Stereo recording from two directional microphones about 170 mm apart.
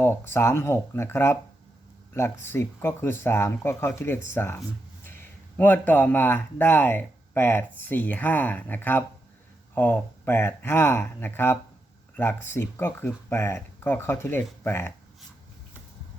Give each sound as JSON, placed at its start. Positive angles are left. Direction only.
{"t": 0.0, "sound": "speech", "side_deg": 15}